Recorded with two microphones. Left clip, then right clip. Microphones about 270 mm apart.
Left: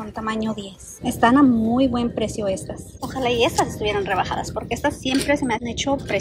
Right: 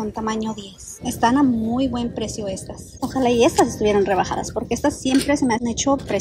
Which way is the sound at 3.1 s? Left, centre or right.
Right.